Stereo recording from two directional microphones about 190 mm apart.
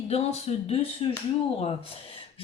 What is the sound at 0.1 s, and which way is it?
Speech, 35° left (ahead or behind).